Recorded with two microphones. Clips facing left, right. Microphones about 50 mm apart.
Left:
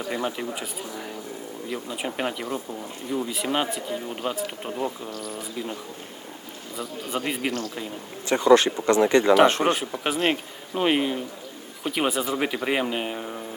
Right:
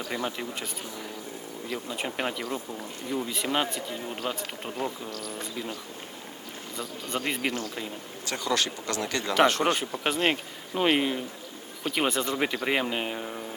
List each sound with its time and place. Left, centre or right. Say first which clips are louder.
0.0 s speech: left 4 dB; centre
1.7 s speech: left 2 dB; centre
7.1 s speech: left 2 dB; centre
8.3 s speech: left 11 dB; left
9.7 s speech: left 2 dB; centre